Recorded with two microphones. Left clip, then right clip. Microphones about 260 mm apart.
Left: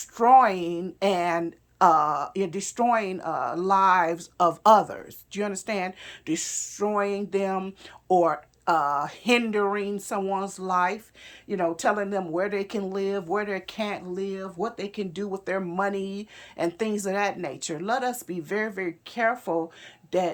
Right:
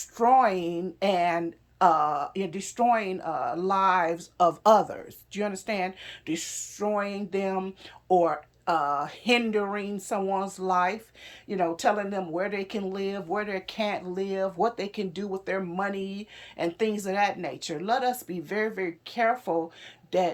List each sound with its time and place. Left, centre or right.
0.2 s a woman's voice: centre